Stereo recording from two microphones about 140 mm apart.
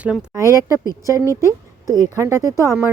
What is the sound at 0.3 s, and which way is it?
Speech, 20° right (ahead or behind).